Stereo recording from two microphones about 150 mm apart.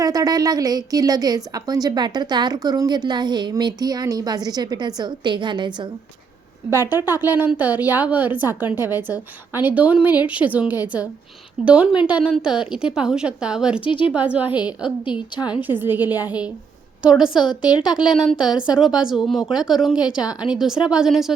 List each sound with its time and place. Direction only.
0.0 s a woman's voice: 25° right (ahead or behind)
6.7 s a woman's voice: 15° right (ahead or behind)
13.8 s speech: 35° left (ahead or behind)
14.1 s a woman's voice: 10° right (ahead or behind)
15.4 s a woman's voice: 30° left (ahead or behind)
15.6 s a woman's voice: 15° right (ahead or behind)
17.4 s a woman's voice: 30° left (ahead or behind)
18.2 s a woman's voice: centre (ahead or behind)